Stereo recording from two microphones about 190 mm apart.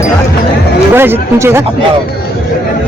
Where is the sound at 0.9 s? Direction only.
10° right (ahead or behind).